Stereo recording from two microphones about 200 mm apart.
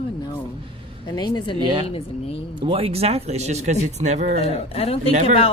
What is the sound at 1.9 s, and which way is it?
Speech, 30° left (ahead or behind).